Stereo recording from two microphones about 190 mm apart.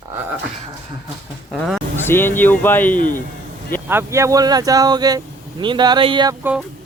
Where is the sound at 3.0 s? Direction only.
45° left (ahead or behind).